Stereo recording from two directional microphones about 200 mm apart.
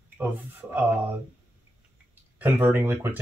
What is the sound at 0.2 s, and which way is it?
Speech, 10° right (ahead or behind).